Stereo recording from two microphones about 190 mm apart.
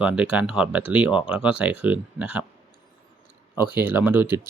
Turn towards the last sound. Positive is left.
turn(degrees=-10)  # may be behind; listen again after turning